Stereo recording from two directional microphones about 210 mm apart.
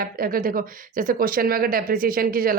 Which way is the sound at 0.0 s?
45° right (ahead or behind).